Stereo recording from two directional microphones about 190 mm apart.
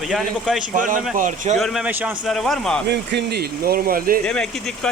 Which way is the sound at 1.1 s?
45° right (ahead or behind).